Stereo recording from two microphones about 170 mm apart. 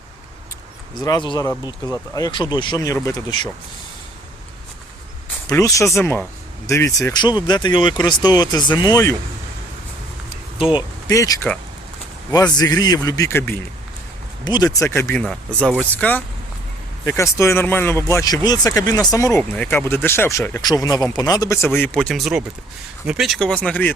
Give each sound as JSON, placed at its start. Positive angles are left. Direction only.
{"t": 0.9, "sound": "speech", "side_deg": 25}
{"t": 5.5, "sound": "speech", "side_deg": 20}
{"t": 10.6, "sound": "speech", "side_deg": 30}
{"t": 11.1, "sound": "speech", "side_deg": 20}